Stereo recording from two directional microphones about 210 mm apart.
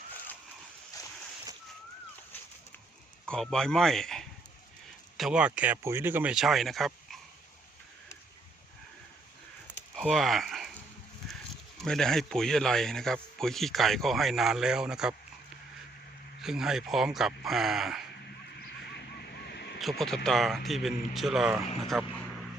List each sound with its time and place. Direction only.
0.9 s boat: 15° left (ahead or behind)
3.2 s speech: 5° left (ahead or behind)
9.9 s a sound: centre (ahead or behind)
11.8 s speech: centre (ahead or behind)
16.4 s speech: centre (ahead or behind)
18.9 s a sound: 50° left (ahead or behind)
19.8 s speech: centre (ahead or behind)